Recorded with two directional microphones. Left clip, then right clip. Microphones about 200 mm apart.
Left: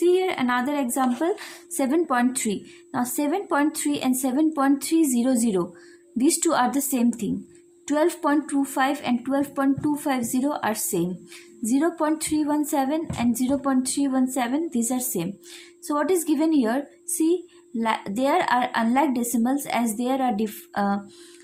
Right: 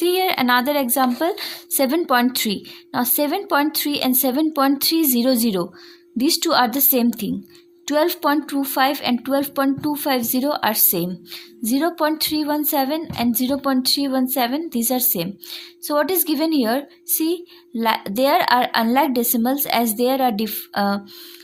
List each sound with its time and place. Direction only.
0.0 s a woman's voice: 45° right (ahead or behind)